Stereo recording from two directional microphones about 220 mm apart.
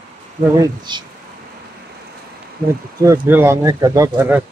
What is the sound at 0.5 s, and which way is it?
Speech, 20° right (ahead or behind).